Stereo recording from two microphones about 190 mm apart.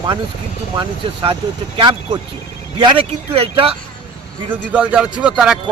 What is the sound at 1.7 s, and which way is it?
Speech, 25° right (ahead or behind).